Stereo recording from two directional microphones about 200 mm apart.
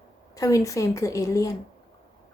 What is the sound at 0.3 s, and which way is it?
A woman's voice, 15° left (ahead or behind).